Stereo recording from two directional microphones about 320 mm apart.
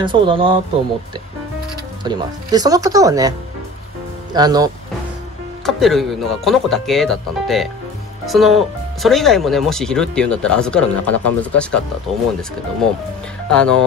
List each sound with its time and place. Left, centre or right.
0.0 s speech: centre
2.0 s speech: centre
5.7 s speech: centre
13.5 s speech: centre